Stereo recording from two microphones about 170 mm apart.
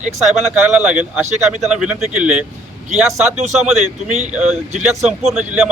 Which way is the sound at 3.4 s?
40° right (ahead or behind).